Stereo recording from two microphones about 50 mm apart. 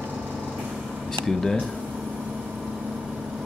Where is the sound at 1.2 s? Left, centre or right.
Centre.